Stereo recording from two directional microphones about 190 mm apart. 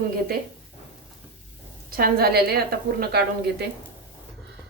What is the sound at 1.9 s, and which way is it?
A woman's voice, 50° right (ahead or behind).